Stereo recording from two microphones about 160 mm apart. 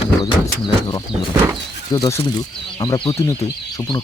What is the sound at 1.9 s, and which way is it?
Speech, 20° left (ahead or behind).